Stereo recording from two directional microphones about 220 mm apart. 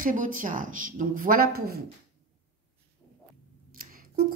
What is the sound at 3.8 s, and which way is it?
Scissors, 40° right (ahead or behind).